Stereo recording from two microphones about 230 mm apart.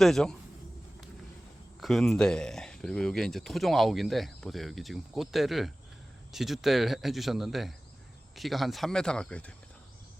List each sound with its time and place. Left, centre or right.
0.0 s speech: centre
1.8 s speech: centre